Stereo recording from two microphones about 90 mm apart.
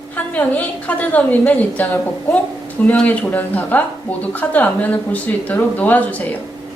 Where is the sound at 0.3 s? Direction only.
15° left (ahead or behind).